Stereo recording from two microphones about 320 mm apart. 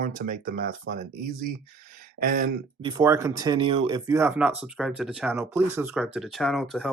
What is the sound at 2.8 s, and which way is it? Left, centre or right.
Speech, centre.